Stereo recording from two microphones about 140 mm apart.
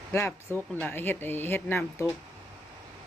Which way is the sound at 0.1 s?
15° left (ahead or behind).